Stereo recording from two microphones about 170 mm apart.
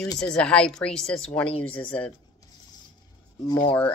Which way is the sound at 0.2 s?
5° left (ahead or behind).